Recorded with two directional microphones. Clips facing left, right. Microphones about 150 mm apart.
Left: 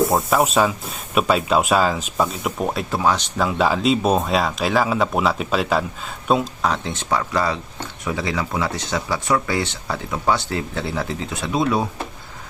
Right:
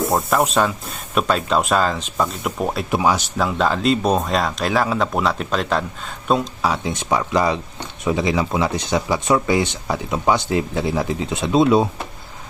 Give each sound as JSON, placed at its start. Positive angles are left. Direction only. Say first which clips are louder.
{"t": 0.1, "sound": "speech", "louder": "even", "side_deg": 0}
{"t": 2.9, "sound": "speech", "louder": "right 2 dB", "side_deg": -10}
{"t": 3.3, "sound": "speech", "louder": "even", "side_deg": 5}
{"t": 6.7, "sound": "speech", "louder": "right 3 dB", "side_deg": -10}